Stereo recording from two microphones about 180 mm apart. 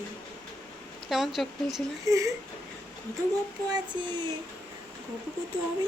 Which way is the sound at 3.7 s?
25° right (ahead or behind).